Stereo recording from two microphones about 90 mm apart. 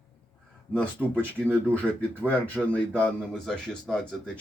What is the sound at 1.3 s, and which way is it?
Speech, 15° left (ahead or behind).